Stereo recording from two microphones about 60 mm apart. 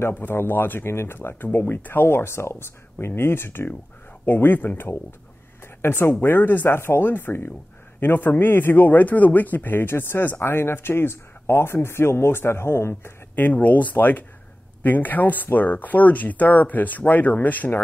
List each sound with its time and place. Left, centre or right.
0.1 s a man's voice: left
13.4 s speech: left